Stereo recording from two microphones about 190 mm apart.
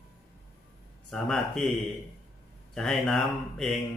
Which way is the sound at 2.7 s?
Centre (ahead or behind).